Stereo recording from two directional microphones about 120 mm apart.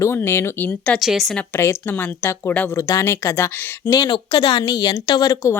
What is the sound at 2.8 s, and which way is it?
Speech, 25° left (ahead or behind).